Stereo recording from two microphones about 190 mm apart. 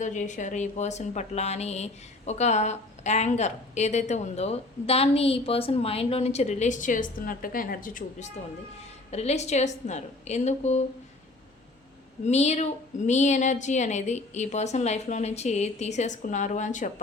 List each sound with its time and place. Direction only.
0.0 s a woman's voice: 40° left (ahead or behind)
9.0 s a woman's voice: 35° left (ahead or behind)
12.2 s a woman's voice: 35° left (ahead or behind)